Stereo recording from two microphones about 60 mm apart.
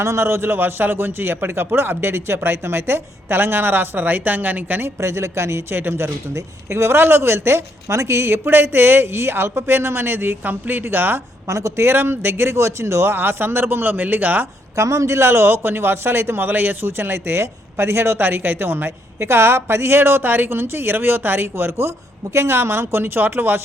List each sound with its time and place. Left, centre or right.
0.0 s a man's voice: right
4.9 s a man's voice: right
11.4 s speech: right
11.8 s a man's voice: right
14.8 s a man's voice: right